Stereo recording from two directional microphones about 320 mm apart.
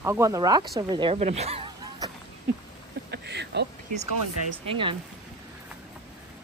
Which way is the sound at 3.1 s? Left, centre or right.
Right.